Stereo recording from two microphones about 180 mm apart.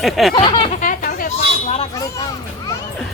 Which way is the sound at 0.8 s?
50° left (ahead or behind).